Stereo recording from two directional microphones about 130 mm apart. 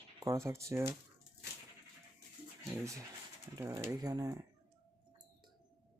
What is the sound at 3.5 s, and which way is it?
Speech, 20° right (ahead or behind).